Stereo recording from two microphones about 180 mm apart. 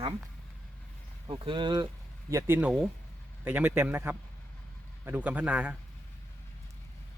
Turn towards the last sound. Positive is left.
turn(degrees=-5)  # may be behind; listen again after turning